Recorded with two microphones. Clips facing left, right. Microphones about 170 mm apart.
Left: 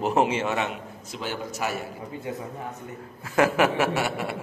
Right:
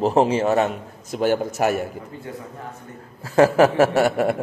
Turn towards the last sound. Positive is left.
turn(degrees=-45)  # may be behind; listen again after turning